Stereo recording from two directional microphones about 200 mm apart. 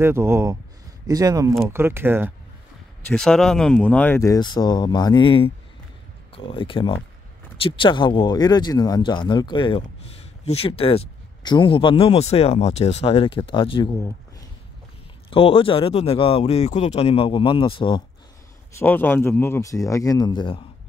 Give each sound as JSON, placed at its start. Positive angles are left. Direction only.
{"t": 0.0, "sound": "speech", "side_deg": -10}
{"t": 3.1, "sound": "speech", "side_deg": 5}
{"t": 15.2, "sound": "speech", "side_deg": 25}
{"t": 18.8, "sound": "speech", "side_deg": 10}